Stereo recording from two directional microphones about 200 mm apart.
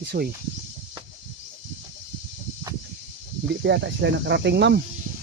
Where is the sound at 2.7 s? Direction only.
15° right (ahead or behind).